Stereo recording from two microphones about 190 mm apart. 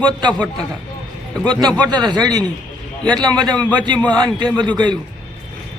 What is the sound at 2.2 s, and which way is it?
A man's voice, 20° right (ahead or behind).